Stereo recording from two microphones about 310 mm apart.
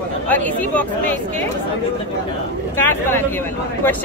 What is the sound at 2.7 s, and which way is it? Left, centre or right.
Speech, centre.